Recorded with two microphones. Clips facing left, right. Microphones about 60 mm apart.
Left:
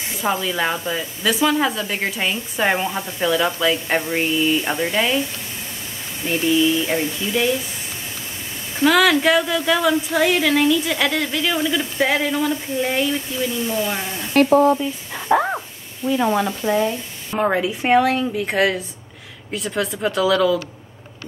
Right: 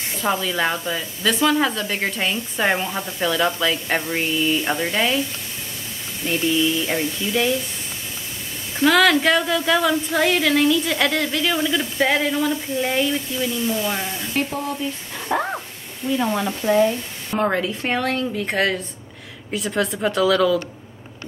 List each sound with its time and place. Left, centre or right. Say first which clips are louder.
0.2 s speech: even; centre
6.2 s speech: left 2 dB; centre
8.7 s speech: even; centre
14.3 s speech: left 11 dB; left
15.1 s a sound: left 5 dB; centre
16.1 s speech: left 3 dB; centre